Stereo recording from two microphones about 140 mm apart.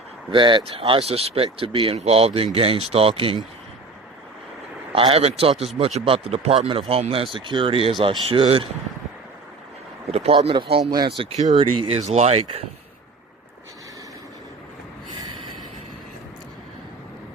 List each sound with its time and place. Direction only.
0.3 s speech: 35° right (ahead or behind)
4.9 s speech: 45° right (ahead or behind)
10.1 s speech: 45° right (ahead or behind)